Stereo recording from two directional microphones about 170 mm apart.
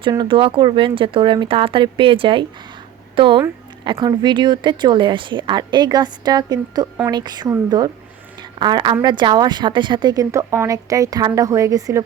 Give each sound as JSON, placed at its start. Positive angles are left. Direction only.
{"t": 0.0, "sound": "a woman's voice", "side_deg": -30}